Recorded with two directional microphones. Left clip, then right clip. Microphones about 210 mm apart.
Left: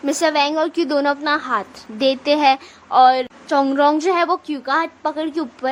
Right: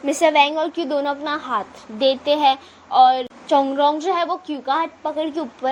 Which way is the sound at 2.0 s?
50° left (ahead or behind).